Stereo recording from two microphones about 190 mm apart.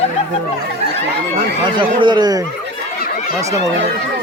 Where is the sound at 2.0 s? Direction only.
25° right (ahead or behind).